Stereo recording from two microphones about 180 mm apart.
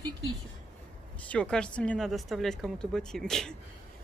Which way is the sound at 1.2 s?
5° left (ahead or behind).